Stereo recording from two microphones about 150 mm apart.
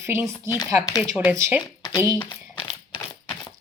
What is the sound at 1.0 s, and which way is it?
Speech, centre (ahead or behind).